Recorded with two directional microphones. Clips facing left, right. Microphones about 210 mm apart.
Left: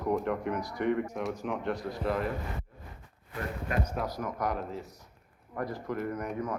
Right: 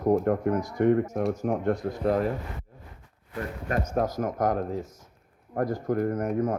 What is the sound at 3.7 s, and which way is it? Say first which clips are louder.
Speech: right 7 dB; 45° right (ahead or behind).